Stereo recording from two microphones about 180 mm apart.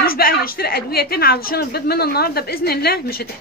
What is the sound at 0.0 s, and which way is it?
Speech, 55° left (ahead or behind).